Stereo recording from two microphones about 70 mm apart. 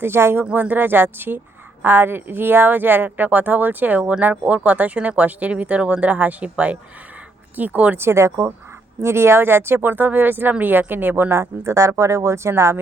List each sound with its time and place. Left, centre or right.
0.0 s speech: right
8.0 s speech: right
11.3 s speech: right